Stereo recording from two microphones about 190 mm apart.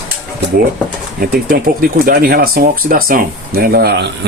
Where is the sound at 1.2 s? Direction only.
50° right (ahead or behind).